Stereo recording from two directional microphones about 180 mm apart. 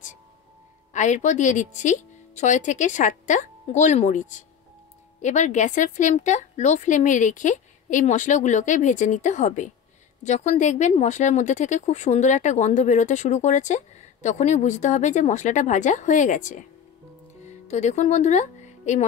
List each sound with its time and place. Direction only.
0.9 s a woman's voice: 40° left (ahead or behind)